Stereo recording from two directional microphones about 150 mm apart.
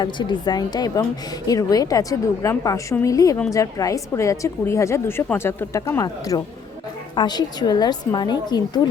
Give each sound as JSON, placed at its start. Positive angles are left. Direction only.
{"t": 0.0, "sound": "a woman's voice", "side_deg": 30}